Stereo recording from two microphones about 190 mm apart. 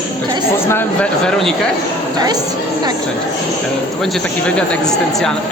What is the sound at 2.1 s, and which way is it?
Speech, 20° right (ahead or behind).